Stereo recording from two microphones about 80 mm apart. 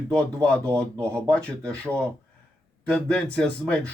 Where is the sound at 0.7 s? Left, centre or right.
Right.